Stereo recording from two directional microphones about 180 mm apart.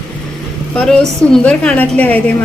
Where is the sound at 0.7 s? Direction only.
5° left (ahead or behind).